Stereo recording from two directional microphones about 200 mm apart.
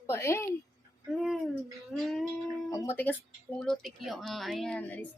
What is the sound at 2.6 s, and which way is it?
A woman's voice, 15° left (ahead or behind).